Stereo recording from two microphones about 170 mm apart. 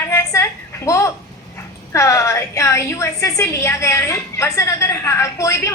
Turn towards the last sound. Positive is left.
turn(degrees=15)  # may be behind; listen again after turning